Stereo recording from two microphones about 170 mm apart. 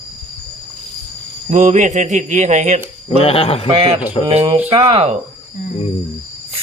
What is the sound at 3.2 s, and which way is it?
Speech, 35° left (ahead or behind).